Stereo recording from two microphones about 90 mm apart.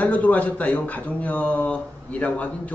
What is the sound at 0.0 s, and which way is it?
A man's voice, 20° left (ahead or behind).